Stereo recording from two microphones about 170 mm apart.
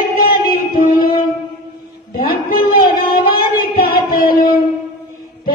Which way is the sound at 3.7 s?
60° left (ahead or behind).